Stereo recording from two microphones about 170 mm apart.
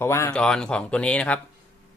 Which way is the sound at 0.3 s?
5° left (ahead or behind).